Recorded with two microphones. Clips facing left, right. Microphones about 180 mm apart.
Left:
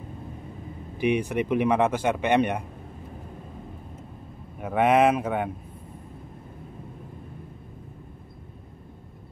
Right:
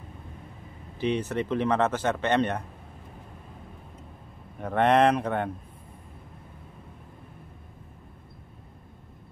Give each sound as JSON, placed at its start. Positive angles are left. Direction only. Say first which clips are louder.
{"t": 0.9, "sound": "speech", "louder": "left 3 dB", "side_deg": 15}
{"t": 4.6, "sound": "speech", "louder": "left 1 dB", "side_deg": 10}